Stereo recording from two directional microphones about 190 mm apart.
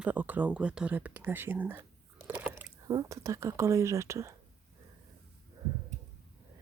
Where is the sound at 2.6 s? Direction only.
20° right (ahead or behind).